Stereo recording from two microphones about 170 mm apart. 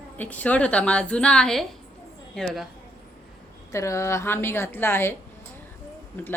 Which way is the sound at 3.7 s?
15° left (ahead or behind).